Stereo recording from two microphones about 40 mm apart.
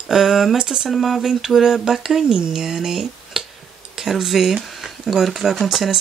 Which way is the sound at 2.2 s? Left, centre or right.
Centre.